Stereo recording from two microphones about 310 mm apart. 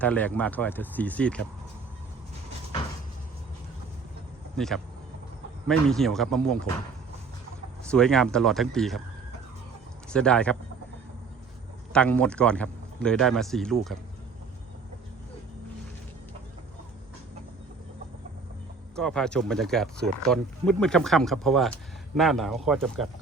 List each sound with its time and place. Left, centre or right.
0.0 s speech: centre
4.5 s speech: centre
7.9 s speech: centre
10.1 s speech: centre
11.9 s speech: centre
18.9 s speech: centre